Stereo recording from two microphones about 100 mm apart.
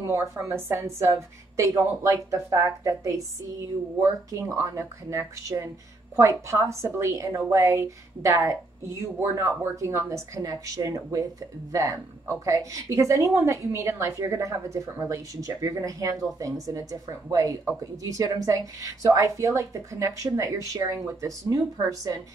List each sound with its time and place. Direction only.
0.0 s a woman's voice: 30° right (ahead or behind)
4.3 s a woman's voice: 30° right (ahead or behind)